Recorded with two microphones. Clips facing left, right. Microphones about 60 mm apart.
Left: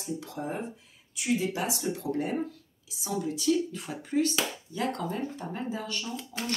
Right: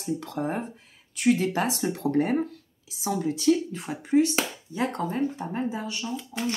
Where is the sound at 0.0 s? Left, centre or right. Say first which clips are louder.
Right 6 dB; right.